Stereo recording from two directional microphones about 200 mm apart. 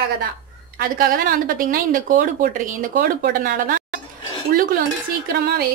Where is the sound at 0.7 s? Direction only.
45° right (ahead or behind).